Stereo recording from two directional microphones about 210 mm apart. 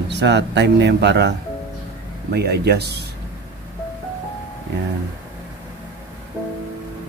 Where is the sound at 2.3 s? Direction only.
50° right (ahead or behind).